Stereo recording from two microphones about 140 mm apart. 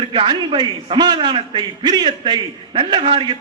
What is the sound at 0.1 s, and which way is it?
A man's voice, 35° right (ahead or behind).